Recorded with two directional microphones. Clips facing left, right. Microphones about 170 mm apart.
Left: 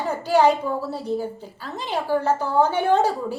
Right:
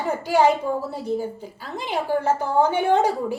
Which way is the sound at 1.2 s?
15° right (ahead or behind).